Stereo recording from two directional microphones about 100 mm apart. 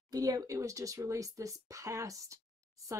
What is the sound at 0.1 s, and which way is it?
Speech, 35° right (ahead or behind).